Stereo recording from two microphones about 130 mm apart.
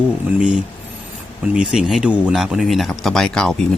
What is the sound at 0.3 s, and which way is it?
Speech, 5° right (ahead or behind).